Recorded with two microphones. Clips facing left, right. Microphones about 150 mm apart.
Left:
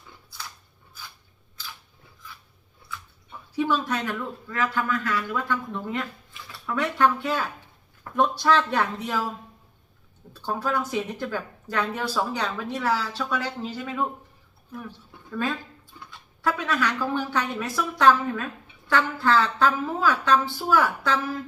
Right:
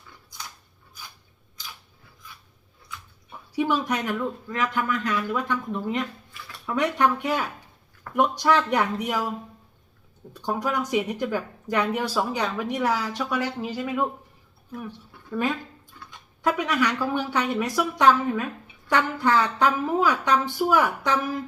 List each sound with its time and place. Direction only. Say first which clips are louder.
3.5 s speech: right 1 dB; 15° right (ahead or behind)
10.3 s speech: right 1 dB; 15° right (ahead or behind)
15.1 s a sound: left 1 dB; 20° left (ahead or behind)
16.0 s speech: right 2 dB; 20° right (ahead or behind)